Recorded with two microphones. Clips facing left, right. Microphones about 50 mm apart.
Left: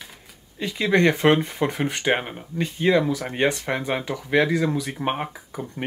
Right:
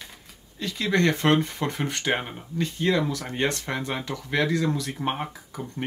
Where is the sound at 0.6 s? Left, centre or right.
Centre.